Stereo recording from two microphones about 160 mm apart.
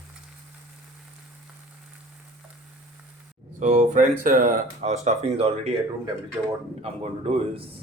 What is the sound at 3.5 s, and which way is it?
Speech, 50° right (ahead or behind).